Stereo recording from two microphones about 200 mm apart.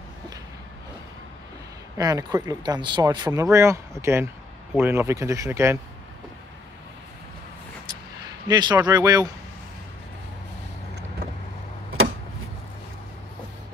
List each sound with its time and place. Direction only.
2.0 s speech: 20° right (ahead or behind)
8.5 s speech: 20° right (ahead or behind)